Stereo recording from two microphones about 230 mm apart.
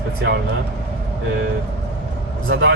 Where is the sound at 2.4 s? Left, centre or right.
Right.